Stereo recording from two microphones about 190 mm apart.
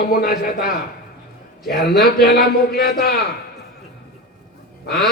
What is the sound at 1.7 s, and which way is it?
A man's voice, 55° left (ahead or behind).